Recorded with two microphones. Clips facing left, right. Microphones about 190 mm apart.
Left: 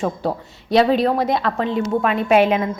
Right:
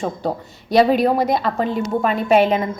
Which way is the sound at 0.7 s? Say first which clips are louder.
Right 1 dB; 5° right (ahead or behind).